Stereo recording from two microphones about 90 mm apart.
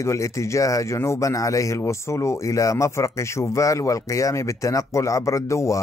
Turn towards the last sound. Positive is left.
turn(degrees=35)  # may be behind; listen again after turning